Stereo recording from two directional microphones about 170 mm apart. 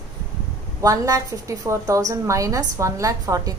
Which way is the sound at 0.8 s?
20° right (ahead or behind).